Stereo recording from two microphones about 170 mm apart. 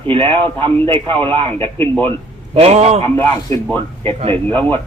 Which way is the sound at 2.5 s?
40° right (ahead or behind).